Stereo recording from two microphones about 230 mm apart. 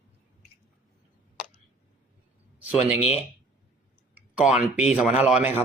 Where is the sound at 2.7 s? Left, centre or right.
Left.